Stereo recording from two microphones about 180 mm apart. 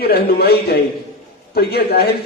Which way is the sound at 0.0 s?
60° left (ahead or behind).